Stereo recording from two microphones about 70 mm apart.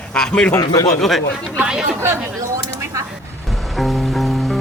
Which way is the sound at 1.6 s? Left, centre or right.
Centre.